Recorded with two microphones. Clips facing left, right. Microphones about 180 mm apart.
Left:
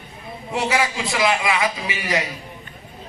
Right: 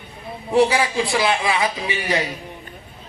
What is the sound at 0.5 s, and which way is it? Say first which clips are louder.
A man's voice: right 5 dB; 30° right (ahead or behind).